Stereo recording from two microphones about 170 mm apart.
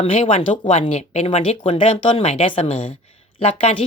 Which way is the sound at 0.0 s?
35° left (ahead or behind).